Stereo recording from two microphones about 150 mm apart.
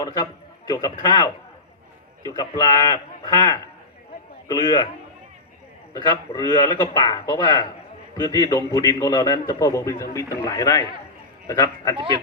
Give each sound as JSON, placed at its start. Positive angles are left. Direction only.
{"t": 0.0, "sound": "a man's voice", "side_deg": 25}
{"t": 5.9, "sound": "a man's voice", "side_deg": 25}
{"t": 11.9, "sound": "speech", "side_deg": -35}